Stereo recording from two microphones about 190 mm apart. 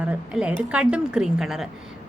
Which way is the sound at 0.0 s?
5° right (ahead or behind).